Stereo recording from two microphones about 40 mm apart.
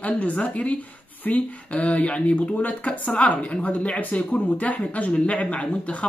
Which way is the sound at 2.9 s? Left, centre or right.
Left.